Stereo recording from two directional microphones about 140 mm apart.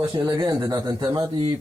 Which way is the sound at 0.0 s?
30° right (ahead or behind).